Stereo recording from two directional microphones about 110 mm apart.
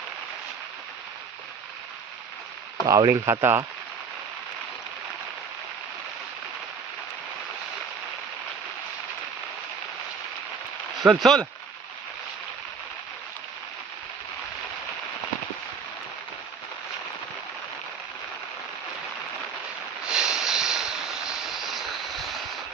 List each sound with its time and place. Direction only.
2.8 s speech: 30° right (ahead or behind)
11.0 s speech: centre (ahead or behind)
20.1 s a sound: 5° right (ahead or behind)